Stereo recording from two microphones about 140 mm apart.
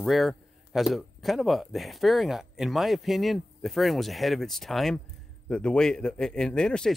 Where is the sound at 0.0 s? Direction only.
Centre (ahead or behind).